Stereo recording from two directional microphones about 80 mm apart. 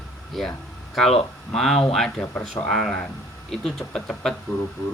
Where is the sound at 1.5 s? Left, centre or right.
Centre.